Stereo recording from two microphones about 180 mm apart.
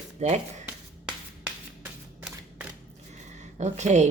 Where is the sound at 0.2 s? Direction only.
40° right (ahead or behind).